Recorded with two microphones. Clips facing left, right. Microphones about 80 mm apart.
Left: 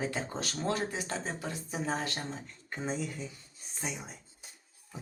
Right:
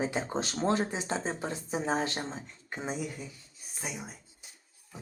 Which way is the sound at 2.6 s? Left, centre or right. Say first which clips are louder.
Even; centre.